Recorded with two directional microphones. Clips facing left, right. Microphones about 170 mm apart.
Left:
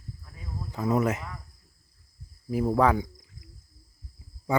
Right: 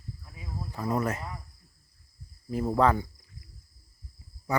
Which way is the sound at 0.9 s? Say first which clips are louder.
Left 4 dB; 20° left (ahead or behind).